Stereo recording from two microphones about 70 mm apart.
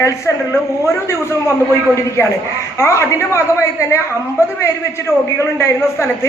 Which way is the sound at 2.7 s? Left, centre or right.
Left.